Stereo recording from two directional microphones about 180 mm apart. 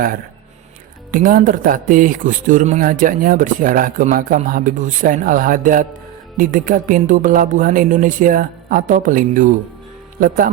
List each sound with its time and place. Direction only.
1.1 s speech: 50° right (ahead or behind)